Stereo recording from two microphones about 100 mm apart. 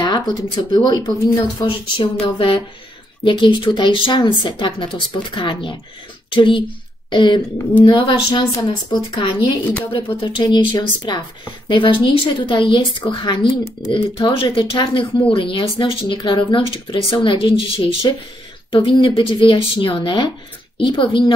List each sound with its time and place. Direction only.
0.0 s speech: 45° left (ahead or behind)
1.6 s speech: 60° left (ahead or behind)
14.3 s speech: 65° left (ahead or behind)